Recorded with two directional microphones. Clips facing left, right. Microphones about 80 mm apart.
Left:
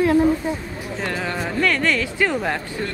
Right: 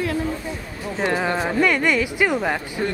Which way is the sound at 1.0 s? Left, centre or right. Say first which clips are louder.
Right 5 dB; right.